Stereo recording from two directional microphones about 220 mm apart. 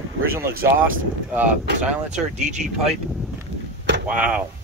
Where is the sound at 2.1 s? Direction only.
35° right (ahead or behind).